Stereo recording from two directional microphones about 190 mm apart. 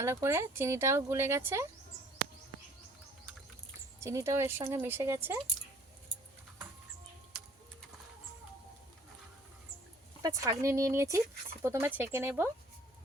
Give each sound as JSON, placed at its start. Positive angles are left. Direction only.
{"t": 0.0, "sound": "speech", "side_deg": -15}
{"t": 4.0, "sound": "speech", "side_deg": -15}
{"t": 10.2, "sound": "speech", "side_deg": -15}